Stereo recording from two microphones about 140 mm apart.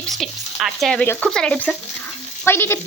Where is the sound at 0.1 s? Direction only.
Centre (ahead or behind).